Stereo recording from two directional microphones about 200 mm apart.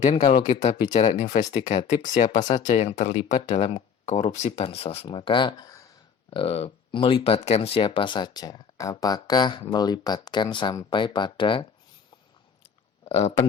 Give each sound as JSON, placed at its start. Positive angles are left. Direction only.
{"t": 0.2, "sound": "speech", "side_deg": 20}
{"t": 13.1, "sound": "speech", "side_deg": 35}